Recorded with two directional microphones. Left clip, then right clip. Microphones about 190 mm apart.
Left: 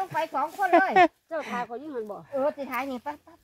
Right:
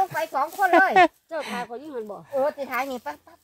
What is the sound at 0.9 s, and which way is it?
Speech, 5° right (ahead or behind).